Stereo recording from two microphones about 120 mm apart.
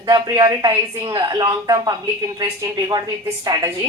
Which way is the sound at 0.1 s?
30° right (ahead or behind).